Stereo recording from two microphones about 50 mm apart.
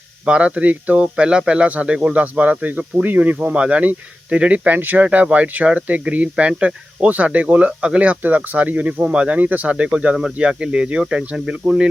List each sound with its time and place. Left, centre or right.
0.3 s speech: right
5.0 s speech: right
11.3 s speech: centre